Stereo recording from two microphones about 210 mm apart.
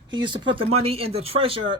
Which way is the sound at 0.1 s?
20° right (ahead or behind).